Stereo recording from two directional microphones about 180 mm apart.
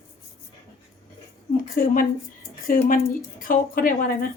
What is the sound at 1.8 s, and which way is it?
A woman's voice, 55° left (ahead or behind).